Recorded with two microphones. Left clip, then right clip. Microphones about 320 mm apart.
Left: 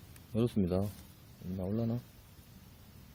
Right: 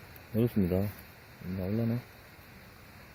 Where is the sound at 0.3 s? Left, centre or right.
Centre.